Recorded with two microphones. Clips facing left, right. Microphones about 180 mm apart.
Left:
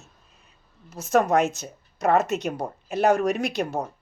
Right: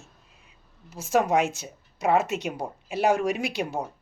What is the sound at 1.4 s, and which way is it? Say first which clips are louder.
Speech: left 2 dB; 40° left (ahead or behind).